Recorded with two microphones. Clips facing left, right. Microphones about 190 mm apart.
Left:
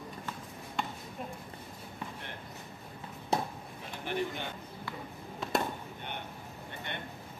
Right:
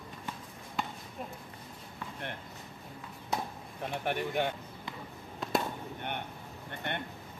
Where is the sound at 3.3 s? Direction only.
30° left (ahead or behind).